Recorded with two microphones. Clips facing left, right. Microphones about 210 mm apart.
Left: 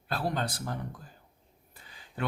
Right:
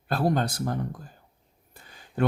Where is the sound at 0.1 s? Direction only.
45° right (ahead or behind).